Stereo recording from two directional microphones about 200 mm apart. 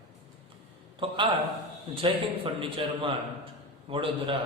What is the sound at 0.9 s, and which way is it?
A man's voice, 25° right (ahead or behind).